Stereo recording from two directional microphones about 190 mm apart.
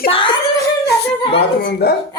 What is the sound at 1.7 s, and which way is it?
Speech, 60° left (ahead or behind).